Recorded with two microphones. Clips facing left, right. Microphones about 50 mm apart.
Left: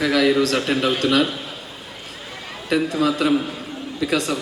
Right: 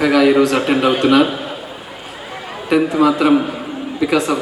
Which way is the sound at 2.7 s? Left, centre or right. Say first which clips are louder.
Right 6 dB; centre.